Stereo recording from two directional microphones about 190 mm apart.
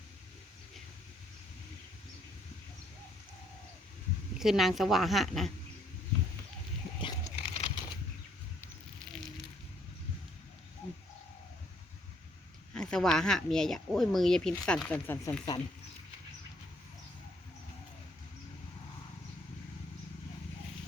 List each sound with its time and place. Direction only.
4.4 s speech: centre (ahead or behind)
7.0 s a sound: 30° left (ahead or behind)
12.7 s speech: 5° left (ahead or behind)